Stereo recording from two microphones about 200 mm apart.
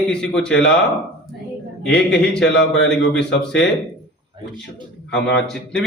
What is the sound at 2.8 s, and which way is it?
Speech, 60° left (ahead or behind).